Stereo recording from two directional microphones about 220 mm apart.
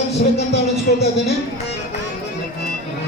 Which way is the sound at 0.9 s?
45° left (ahead or behind).